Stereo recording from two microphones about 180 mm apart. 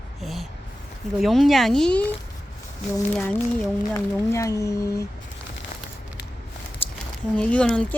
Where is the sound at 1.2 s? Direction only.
Centre (ahead or behind).